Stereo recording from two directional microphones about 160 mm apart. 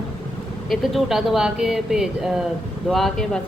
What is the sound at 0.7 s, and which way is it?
Speech, centre (ahead or behind).